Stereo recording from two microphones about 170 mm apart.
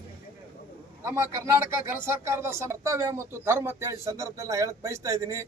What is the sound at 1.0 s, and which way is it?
Speech, 15° right (ahead or behind).